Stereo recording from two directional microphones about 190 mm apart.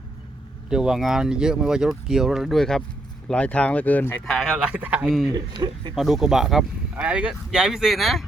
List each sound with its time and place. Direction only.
0.7 s speech: 5° right (ahead or behind)
5.3 s speech: 25° right (ahead or behind)
6.0 s speech: centre (ahead or behind)